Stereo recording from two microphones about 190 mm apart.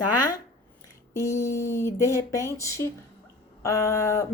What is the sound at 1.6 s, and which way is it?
A woman's voice, 15° left (ahead or behind).